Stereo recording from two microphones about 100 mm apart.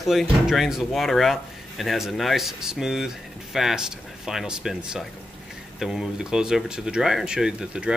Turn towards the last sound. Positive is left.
turn(degrees=-5)  # may be behind; listen again after turning